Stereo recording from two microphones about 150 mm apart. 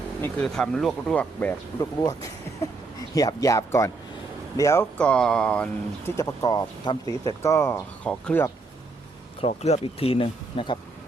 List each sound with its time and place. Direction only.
0.4 s speech: 5° left (ahead or behind)
1.8 s speech: 20° left (ahead or behind)
4.9 s speech: 5° left (ahead or behind)
6.1 s speech: 20° left (ahead or behind)
9.4 s speech: 45° left (ahead or behind)